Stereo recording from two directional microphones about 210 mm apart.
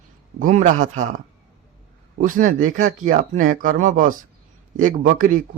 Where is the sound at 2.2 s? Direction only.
40° right (ahead or behind).